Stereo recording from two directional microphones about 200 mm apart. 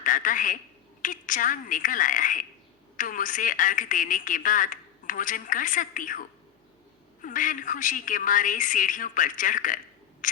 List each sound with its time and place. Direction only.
0.0 s a woman's voice: 40° left (ahead or behind)